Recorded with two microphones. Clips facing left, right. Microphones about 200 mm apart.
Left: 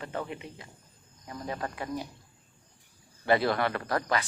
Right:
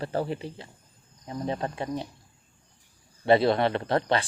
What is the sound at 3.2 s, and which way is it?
A man's voice, 25° right (ahead or behind).